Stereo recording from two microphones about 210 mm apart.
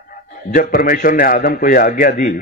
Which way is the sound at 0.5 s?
40° left (ahead or behind).